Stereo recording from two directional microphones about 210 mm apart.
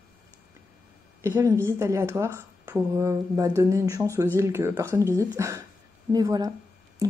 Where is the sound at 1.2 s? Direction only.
15° right (ahead or behind).